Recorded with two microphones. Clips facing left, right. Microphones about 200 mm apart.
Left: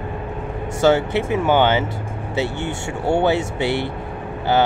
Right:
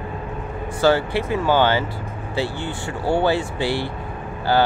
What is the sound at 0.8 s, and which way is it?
Speech, 20° left (ahead or behind).